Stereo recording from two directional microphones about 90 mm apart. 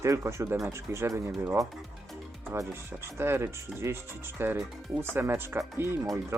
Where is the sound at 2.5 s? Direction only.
30° right (ahead or behind).